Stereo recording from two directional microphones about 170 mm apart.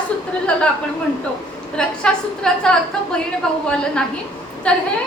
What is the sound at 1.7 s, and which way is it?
A woman's voice, 5° left (ahead or behind).